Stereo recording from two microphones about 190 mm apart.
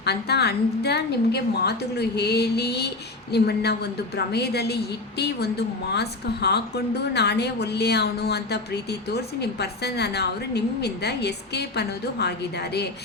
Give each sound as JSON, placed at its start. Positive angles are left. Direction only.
{"t": 0.0, "sound": "a woman's voice", "side_deg": 60}